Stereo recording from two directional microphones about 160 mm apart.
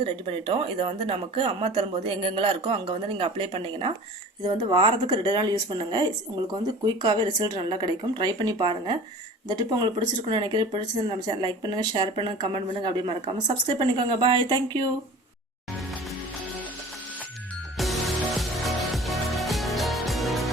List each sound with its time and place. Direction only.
0.0 s speech: 35° right (ahead or behind)
17.7 s music: centre (ahead or behind)